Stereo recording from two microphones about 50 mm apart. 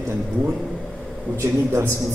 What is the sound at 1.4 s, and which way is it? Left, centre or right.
Speech, right.